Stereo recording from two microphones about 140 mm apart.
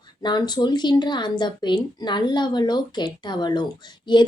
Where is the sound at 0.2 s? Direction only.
30° left (ahead or behind).